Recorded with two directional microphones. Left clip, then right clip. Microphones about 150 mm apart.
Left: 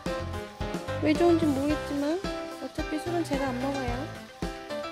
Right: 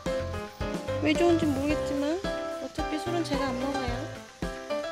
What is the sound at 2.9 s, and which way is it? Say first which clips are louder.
Music: left 1 dB; 5° left (ahead or behind).